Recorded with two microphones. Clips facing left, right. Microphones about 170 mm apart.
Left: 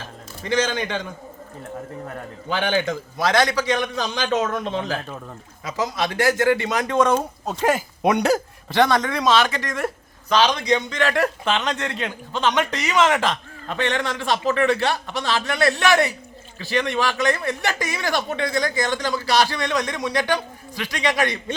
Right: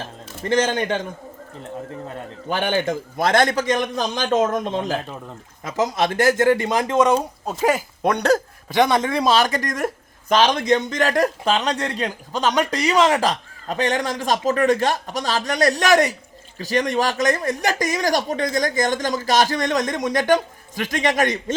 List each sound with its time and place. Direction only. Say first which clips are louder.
0.4 s speech: right 3 dB; 50° right (ahead or behind)
2.5 s speech: right 1 dB; 50° right (ahead or behind)
4.8 s speech: right 2 dB; 20° right (ahead or behind)
5.6 s speech: right 4 dB; 50° right (ahead or behind); by 6.9 s 35° right (ahead or behind)
6.9 s speech: right 1 dB; 15° right (ahead or behind)
7.4 s speech: right 1 dB; 5° right (ahead or behind)
8.0 s speech: even; 10° left (ahead or behind)
8.7 s speech: even; 15° right (ahead or behind)
9.0 s a man's voice: right 1 dB; 30° right (ahead or behind); by 21.5 s 45° right (ahead or behind)